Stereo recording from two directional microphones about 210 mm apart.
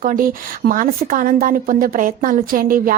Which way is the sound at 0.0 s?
40° right (ahead or behind).